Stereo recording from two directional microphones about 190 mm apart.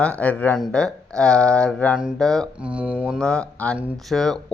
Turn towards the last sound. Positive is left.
turn(degrees=5)  # may be behind; listen again after turning